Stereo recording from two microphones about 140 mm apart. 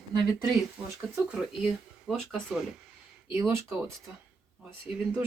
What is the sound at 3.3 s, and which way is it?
Speech, 15° right (ahead or behind).